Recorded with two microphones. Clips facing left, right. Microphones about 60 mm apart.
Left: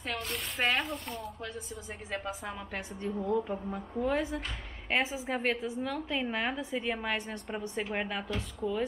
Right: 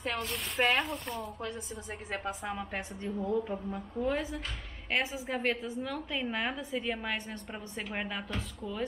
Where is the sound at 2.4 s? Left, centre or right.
Centre.